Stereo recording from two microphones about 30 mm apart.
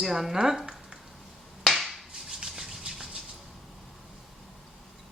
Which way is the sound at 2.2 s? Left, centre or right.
Centre.